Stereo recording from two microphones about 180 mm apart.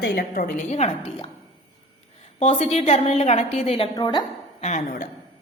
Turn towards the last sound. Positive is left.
turn(degrees=40)  # may be behind; listen again after turning